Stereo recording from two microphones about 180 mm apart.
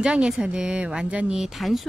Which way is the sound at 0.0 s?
5° right (ahead or behind).